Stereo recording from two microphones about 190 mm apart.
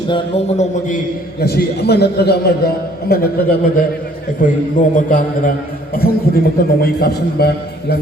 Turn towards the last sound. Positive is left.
turn(degrees=55)  # may be behind; listen again after turning